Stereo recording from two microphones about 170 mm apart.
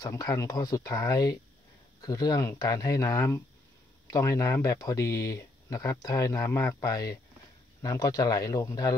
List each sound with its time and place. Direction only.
0.0 s speech: 20° left (ahead or behind)